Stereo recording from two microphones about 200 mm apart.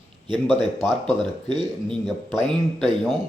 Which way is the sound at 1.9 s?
Centre (ahead or behind).